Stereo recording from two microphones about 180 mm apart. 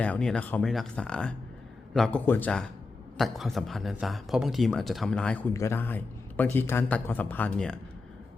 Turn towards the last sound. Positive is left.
turn(degrees=5)  # may be behind; listen again after turning